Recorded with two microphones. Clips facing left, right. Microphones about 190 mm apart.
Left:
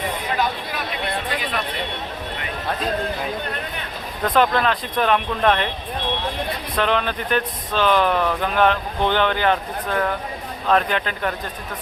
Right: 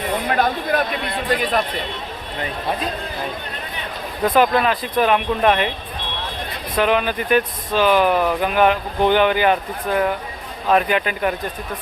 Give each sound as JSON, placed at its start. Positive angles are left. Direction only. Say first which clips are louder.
{"t": 0.3, "sound": "speech", "louder": "right 6 dB", "side_deg": -55}
{"t": 4.2, "sound": "speech", "louder": "right 2 dB", "side_deg": -10}
{"t": 6.7, "sound": "speech", "louder": "right 3 dB", "side_deg": -10}